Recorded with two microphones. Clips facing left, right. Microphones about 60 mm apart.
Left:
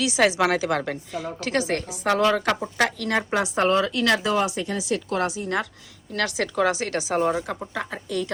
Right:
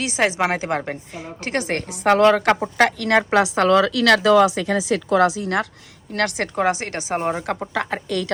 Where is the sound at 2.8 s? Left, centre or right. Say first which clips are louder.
Right 6 dB; right.